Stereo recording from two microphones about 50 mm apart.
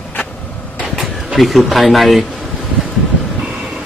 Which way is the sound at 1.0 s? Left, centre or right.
Centre.